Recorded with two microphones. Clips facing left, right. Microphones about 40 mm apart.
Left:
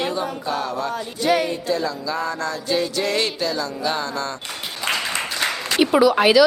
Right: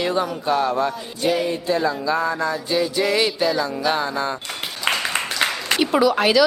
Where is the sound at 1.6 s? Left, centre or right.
Right.